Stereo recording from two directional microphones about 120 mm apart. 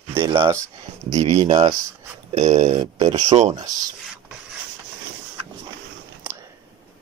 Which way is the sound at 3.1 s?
70° right (ahead or behind).